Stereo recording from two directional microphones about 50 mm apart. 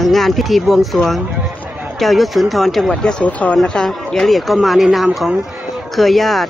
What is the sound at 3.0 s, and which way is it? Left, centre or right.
Speech, left.